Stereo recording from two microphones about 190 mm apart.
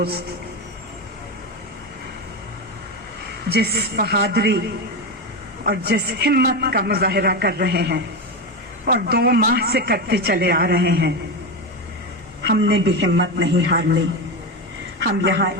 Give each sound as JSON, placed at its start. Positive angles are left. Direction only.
{"t": 3.5, "sound": "a man's voice", "side_deg": -55}
{"t": 5.6, "sound": "a man's voice", "side_deg": -55}
{"t": 12.4, "sound": "a man's voice", "side_deg": -65}